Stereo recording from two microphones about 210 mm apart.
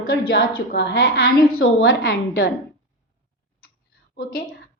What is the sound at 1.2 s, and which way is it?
A woman's voice, 45° left (ahead or behind).